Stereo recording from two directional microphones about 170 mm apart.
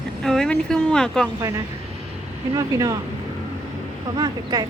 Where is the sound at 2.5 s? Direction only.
20° right (ahead or behind).